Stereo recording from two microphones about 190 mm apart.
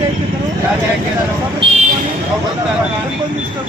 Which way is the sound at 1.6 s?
30° right (ahead or behind).